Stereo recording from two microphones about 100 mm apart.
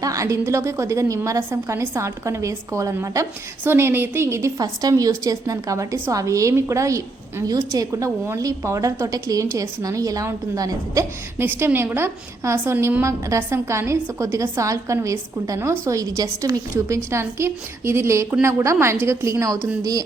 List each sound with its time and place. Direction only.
0.0 s a woman's voice: 35° right (ahead or behind)
11.3 s a woman's voice: 20° right (ahead or behind); by 20.1 s 40° right (ahead or behind)